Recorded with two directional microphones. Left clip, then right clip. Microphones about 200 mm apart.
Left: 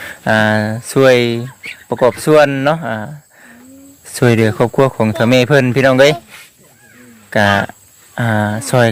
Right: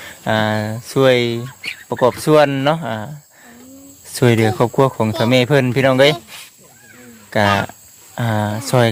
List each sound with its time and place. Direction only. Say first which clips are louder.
0.0 s speech: left 5 dB; 15° left (ahead or behind)
7.3 s speech: left 3 dB; 10° left (ahead or behind)